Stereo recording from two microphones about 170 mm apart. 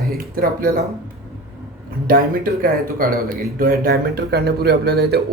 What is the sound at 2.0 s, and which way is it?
Speech, 55° right (ahead or behind).